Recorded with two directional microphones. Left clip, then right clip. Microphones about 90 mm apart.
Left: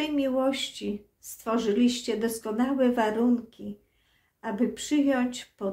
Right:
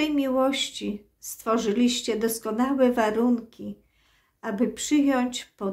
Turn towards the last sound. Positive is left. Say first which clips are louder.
# right 3 dB
turn(degrees=-30)  # may be behind; listen again after turning